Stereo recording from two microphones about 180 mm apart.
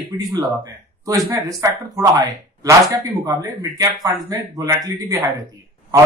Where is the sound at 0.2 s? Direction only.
20° right (ahead or behind).